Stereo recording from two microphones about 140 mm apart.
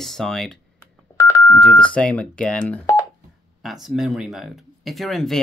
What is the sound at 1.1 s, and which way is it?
Telephone dialing, 25° left (ahead or behind).